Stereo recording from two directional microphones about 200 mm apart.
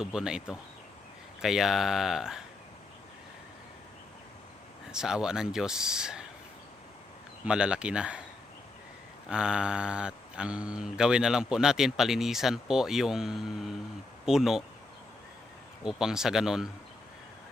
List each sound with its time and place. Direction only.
0.0 s speech: 5° right (ahead or behind)
4.9 s speech: 5° right (ahead or behind)
7.4 s speech: 5° right (ahead or behind)
9.3 s speech: 5° right (ahead or behind)
15.8 s speech: 5° right (ahead or behind)